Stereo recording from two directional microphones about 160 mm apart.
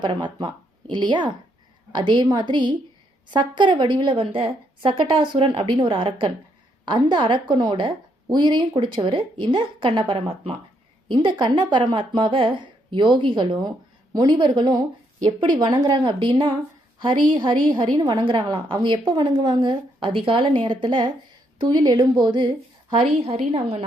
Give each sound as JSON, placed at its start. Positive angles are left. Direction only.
{"t": 0.0, "sound": "a woman's voice", "side_deg": -30}